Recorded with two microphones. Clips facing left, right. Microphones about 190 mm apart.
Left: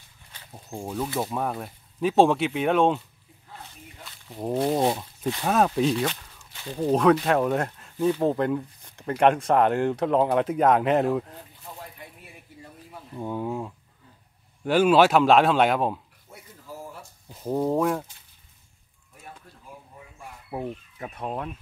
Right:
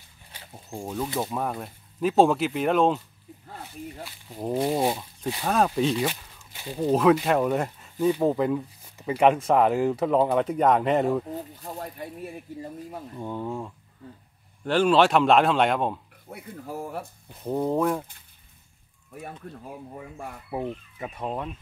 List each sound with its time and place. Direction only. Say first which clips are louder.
0.5 s speech: even; 5° left (ahead or behind)
4.0 s speech: left 2 dB; centre (ahead or behind)
6.0 s a sound: even; 10° right (ahead or behind)
6.8 s speech: even; centre (ahead or behind)
11.6 s speech: right 7 dB; 40° right (ahead or behind)
13.2 s speech: left 3 dB; 10° left (ahead or behind)
16.3 s speech: right 7 dB; 60° right (ahead or behind)
17.3 s speech: left 1 dB; centre (ahead or behind)
19.9 s speech: right 7 dB; 60° right (ahead or behind)
21.0 s speech: right 1 dB; centre (ahead or behind)